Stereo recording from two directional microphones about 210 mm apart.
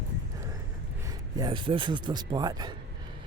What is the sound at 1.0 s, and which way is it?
Speech, 15° right (ahead or behind).